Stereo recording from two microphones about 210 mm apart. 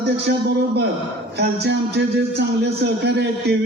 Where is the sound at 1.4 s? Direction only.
55° right (ahead or behind).